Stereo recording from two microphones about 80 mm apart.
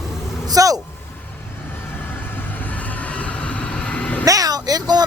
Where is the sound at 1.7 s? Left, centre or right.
Left.